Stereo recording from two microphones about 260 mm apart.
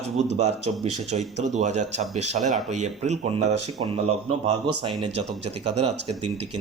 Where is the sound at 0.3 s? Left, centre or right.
Right.